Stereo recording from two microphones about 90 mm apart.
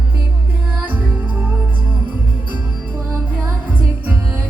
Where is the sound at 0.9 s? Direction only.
20° right (ahead or behind).